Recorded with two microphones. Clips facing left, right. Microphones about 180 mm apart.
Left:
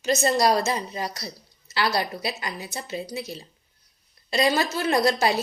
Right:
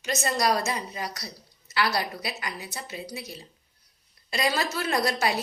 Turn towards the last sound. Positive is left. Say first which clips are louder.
# left 5 dB
turn(degrees=25)  # may be behind; listen again after turning